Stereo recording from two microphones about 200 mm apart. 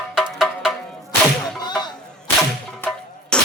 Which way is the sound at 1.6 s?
20° left (ahead or behind).